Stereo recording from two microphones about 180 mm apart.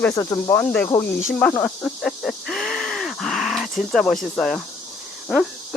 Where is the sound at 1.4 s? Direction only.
10° left (ahead or behind).